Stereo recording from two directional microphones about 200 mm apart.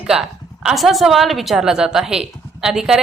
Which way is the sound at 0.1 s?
5° right (ahead or behind).